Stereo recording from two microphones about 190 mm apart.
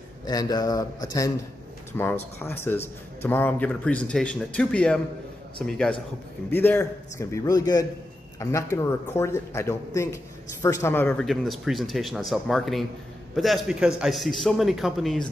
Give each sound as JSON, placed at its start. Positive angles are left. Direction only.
{"t": 0.3, "sound": "a man's voice", "side_deg": 20}